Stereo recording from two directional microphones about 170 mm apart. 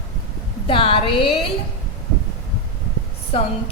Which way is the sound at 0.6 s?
30° left (ahead or behind).